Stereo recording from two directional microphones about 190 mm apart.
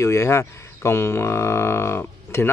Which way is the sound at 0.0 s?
15° left (ahead or behind).